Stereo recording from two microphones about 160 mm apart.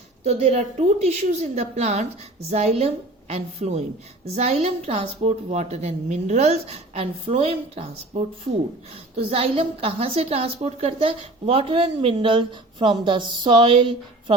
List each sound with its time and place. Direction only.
0.3 s a woman's voice: 45° right (ahead or behind)